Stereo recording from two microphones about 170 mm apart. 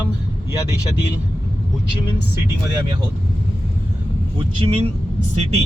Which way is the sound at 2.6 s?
25° right (ahead or behind).